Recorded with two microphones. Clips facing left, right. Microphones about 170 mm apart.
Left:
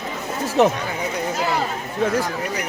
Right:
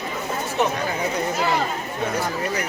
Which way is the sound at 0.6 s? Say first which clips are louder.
Left 6 dB; 90° left.